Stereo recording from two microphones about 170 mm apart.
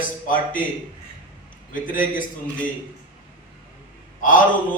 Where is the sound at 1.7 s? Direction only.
50° left (ahead or behind).